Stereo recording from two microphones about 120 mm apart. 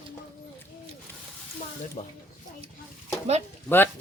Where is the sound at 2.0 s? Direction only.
65° left (ahead or behind).